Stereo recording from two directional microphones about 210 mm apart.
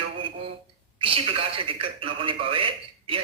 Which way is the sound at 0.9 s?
25° right (ahead or behind).